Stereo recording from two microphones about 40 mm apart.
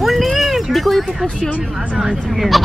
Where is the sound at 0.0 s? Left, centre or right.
Centre.